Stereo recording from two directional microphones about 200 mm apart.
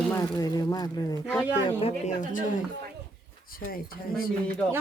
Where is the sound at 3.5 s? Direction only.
45° left (ahead or behind).